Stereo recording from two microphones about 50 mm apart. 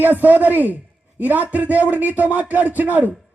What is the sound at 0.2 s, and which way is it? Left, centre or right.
A man's voice, right.